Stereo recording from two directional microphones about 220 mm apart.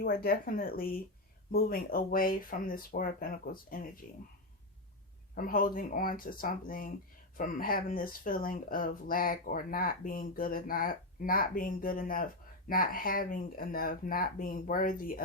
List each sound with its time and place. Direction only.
0.0 s speech: 40° left (ahead or behind)
5.3 s speech: 40° left (ahead or behind)